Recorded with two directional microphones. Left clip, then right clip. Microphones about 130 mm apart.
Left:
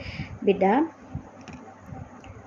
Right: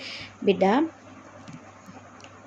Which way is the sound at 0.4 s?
25° right (ahead or behind).